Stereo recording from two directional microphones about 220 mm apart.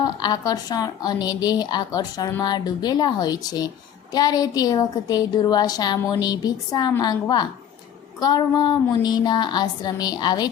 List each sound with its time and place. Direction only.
0.0 s a woman's voice: 20° left (ahead or behind)
8.2 s music: 20° left (ahead or behind)